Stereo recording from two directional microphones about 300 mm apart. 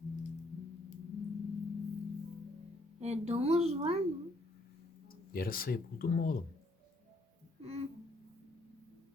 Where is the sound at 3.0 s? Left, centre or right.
Right.